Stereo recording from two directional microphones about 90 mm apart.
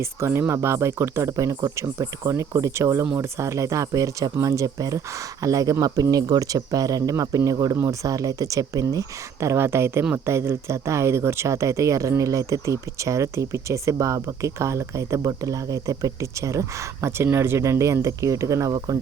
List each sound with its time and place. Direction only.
0.0 s speech: 30° right (ahead or behind)